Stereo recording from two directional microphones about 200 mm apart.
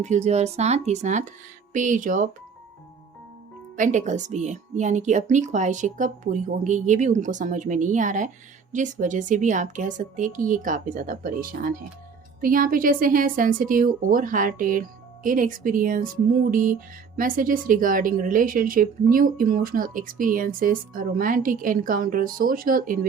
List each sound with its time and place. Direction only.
0.0 s speech: 35° right (ahead or behind)
3.8 s a woman's voice: 40° right (ahead or behind)